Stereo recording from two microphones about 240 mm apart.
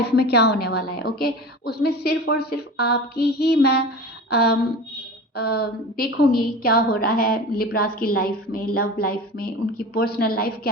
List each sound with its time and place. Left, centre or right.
0.0 s a woman's voice: left
5.5 s a woman's voice: left